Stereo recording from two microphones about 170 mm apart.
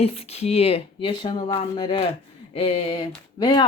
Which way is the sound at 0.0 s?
35° left (ahead or behind).